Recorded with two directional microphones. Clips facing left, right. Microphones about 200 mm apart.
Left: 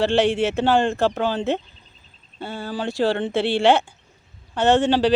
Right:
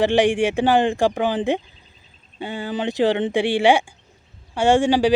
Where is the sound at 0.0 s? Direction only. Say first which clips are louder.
Right 2 dB; 15° right (ahead or behind).